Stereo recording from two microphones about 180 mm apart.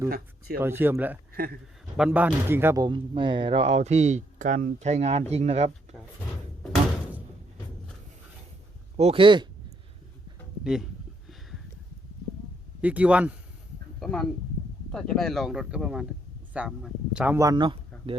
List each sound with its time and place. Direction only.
0.1 s speech: 55° right (ahead or behind)
0.6 s speech: 10° right (ahead or behind); by 5.7 s 35° right (ahead or behind)
9.0 s speech: 30° right (ahead or behind)
10.6 s speech: centre (ahead or behind)
12.8 s speech: 10° right (ahead or behind)
14.0 s speech: 5° left (ahead or behind); by 17.7 s 25° right (ahead or behind)